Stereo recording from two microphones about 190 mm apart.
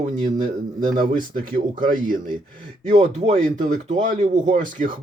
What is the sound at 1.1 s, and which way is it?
Speech, 45° right (ahead or behind).